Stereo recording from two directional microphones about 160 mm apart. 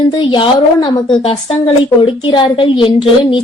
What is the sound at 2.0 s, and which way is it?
A woman's voice, 30° left (ahead or behind).